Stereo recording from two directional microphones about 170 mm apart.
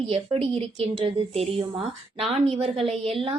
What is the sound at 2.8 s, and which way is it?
Speech, centre (ahead or behind).